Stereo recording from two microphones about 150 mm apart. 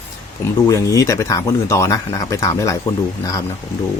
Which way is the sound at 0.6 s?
20° left (ahead or behind).